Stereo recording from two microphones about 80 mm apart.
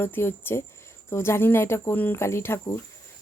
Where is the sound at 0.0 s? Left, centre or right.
Left.